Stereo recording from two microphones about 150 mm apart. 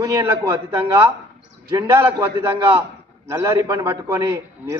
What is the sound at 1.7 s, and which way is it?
Speech, 20° right (ahead or behind).